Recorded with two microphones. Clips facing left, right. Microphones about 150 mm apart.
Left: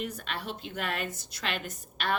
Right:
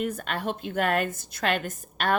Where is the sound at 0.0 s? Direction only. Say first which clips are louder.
Right 7 dB; 50° right (ahead or behind).